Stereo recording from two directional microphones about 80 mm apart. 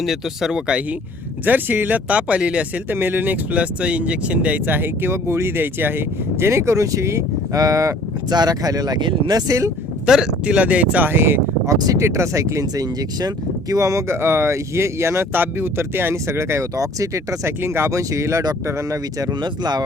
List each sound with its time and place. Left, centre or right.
0.0 s speech: centre
1.5 s speech: right
2.9 s speech: right
8.3 s speech: right
9.0 s speech: right
9.3 s speech: right
10.1 s speech: centre; by 11.7 s right
11.7 s speech: right
11.9 s speech: right
14.2 s speech: right
17.6 s speech: right
18.4 s speech: right